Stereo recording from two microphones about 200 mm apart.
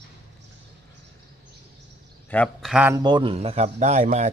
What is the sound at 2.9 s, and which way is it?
A man's voice, 20° right (ahead or behind).